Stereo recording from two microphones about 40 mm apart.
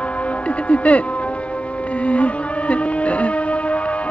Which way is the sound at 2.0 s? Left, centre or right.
Left.